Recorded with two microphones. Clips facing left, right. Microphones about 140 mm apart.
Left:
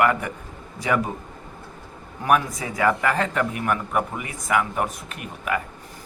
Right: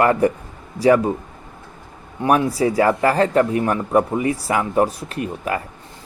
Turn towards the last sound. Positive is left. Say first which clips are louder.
# right 4 dB
turn(degrees=-35)  # may be behind; listen again after turning